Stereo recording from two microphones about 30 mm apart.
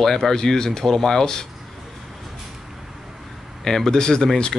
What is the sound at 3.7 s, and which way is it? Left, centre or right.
Speech, centre.